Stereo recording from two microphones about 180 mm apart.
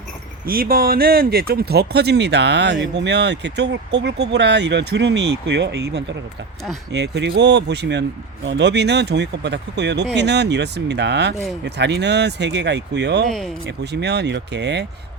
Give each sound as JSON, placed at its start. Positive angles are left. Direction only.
{"t": 0.4, "sound": "speech", "side_deg": -55}
{"t": 13.2, "sound": "speech", "side_deg": 0}
{"t": 13.7, "sound": "speech", "side_deg": -70}